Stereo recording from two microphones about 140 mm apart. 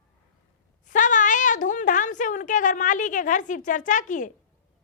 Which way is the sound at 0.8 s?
65° left (ahead or behind).